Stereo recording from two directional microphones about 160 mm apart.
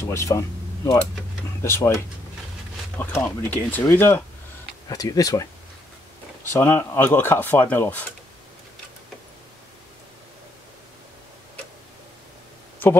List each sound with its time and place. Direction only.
0.0 s speech: 20° left (ahead or behind)
4.8 s speech: 25° left (ahead or behind)
6.5 s speech: 15° left (ahead or behind)